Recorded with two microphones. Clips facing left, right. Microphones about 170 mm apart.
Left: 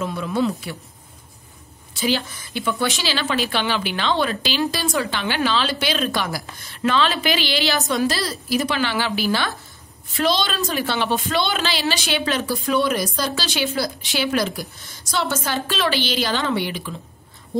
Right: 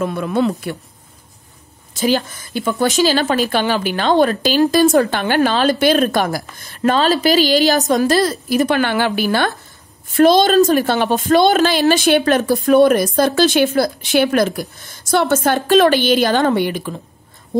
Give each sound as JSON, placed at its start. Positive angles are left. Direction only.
{"t": 0.0, "sound": "speech", "side_deg": -55}
{"t": 2.0, "sound": "a woman's voice", "side_deg": -45}